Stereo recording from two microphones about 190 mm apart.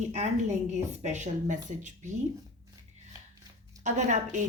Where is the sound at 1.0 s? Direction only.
40° right (ahead or behind).